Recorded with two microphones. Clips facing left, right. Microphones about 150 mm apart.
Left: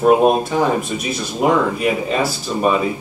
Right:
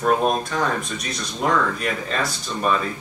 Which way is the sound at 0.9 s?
5° left (ahead or behind).